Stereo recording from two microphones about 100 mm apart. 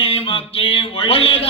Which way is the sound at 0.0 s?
70° left (ahead or behind).